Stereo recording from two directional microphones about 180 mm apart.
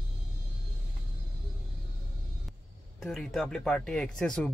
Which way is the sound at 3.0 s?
Centre (ahead or behind).